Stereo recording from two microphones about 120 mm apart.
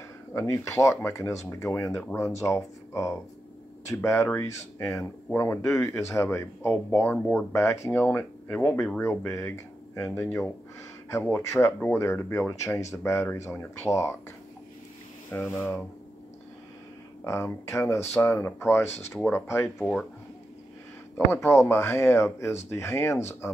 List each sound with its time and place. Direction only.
0.3 s speech: 20° left (ahead or behind); by 9.0 s 5° left (ahead or behind)
9.0 s speech: 20° left (ahead or behind)
15.3 s speech: 15° left (ahead or behind)
17.2 s speech: 20° left (ahead or behind)
21.3 s speech: 20° left (ahead or behind)